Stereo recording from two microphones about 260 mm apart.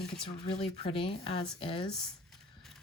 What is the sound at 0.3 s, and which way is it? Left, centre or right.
Speech, left.